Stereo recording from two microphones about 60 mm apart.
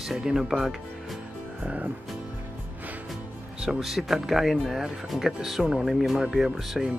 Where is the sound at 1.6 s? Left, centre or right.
Right.